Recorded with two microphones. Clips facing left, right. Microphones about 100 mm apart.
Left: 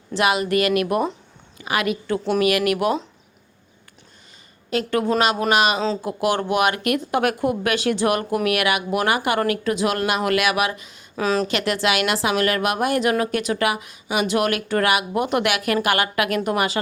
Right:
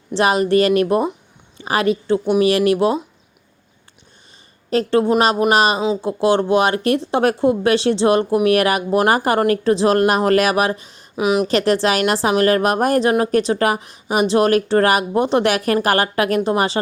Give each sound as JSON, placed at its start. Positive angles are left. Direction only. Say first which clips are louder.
{"t": 0.1, "sound": "speech", "louder": "right 4 dB", "side_deg": -35}
{"t": 4.7, "sound": "speech", "louder": "right 5 dB", "side_deg": -30}
{"t": 11.2, "sound": "a woman's voice", "louder": "right 4 dB", "side_deg": -15}
{"t": 11.4, "sound": "speech", "louder": "right 5 dB", "side_deg": -35}